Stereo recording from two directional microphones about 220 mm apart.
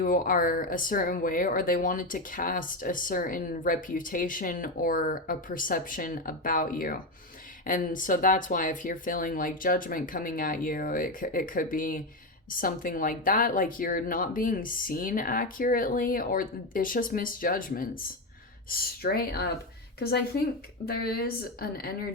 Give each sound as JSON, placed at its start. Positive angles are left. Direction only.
{"t": 0.0, "sound": "speech", "side_deg": 40}